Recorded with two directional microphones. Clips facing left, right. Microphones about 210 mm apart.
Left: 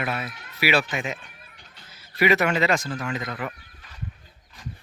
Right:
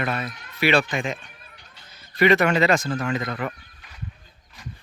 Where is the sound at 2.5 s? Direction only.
40° right (ahead or behind).